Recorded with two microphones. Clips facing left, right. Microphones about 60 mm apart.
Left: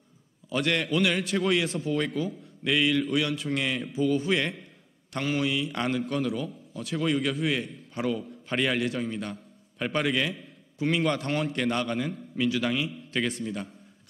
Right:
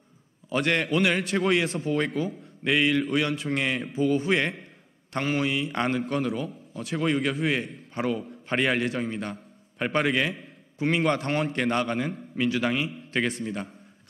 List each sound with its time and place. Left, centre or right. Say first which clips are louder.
0.7 s a man's voice: right 2 dB; right